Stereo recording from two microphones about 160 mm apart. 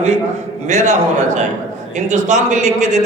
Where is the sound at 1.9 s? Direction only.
50° right (ahead or behind).